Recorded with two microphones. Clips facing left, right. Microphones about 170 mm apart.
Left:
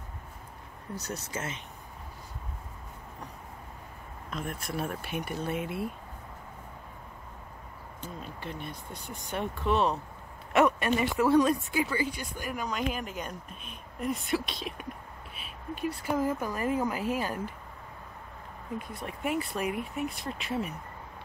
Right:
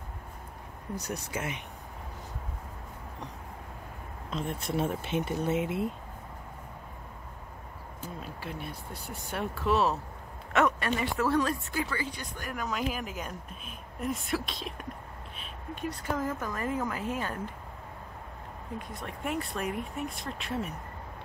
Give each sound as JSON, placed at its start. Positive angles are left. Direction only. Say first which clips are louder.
{"t": 0.9, "sound": "speech", "louder": "right 1 dB", "side_deg": -15}
{"t": 4.3, "sound": "speech", "louder": "right 3 dB", "side_deg": -25}
{"t": 8.0, "sound": "speech", "louder": "even", "side_deg": -5}
{"t": 10.5, "sound": "speech", "louder": "left 3 dB", "side_deg": 15}
{"t": 12.6, "sound": "speech", "louder": "right 1 dB", "side_deg": -5}
{"t": 18.9, "sound": "speech", "louder": "left 2 dB", "side_deg": 5}